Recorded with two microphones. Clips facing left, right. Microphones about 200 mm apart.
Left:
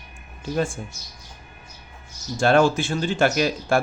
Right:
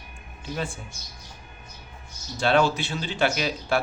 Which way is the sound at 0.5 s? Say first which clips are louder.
Left 7 dB; 45° left (ahead or behind).